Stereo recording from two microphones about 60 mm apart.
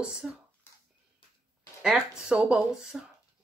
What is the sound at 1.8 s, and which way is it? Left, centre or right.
Speech, centre.